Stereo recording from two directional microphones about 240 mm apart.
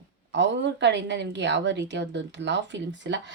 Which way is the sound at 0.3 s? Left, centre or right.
Right.